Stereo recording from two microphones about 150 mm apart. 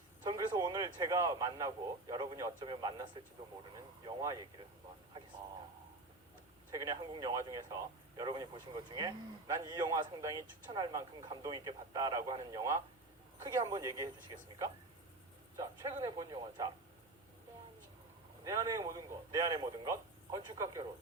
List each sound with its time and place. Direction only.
0.3 s speech: 25° right (ahead or behind)
6.7 s speech: 25° right (ahead or behind)
15.5 s speech: 25° right (ahead or behind)
18.4 s speech: 20° right (ahead or behind)